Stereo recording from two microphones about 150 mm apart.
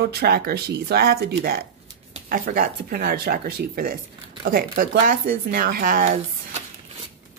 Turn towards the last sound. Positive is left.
turn(degrees=-65)  # may be behind; listen again after turning